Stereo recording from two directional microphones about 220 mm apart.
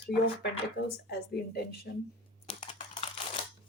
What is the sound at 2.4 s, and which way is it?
Computer keyboard, 25° left (ahead or behind).